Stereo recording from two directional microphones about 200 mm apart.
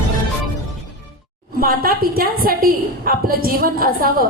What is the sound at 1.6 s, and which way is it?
A woman's voice, 45° right (ahead or behind).